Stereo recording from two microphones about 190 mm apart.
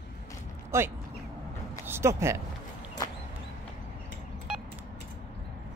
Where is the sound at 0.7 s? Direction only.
15° right (ahead or behind).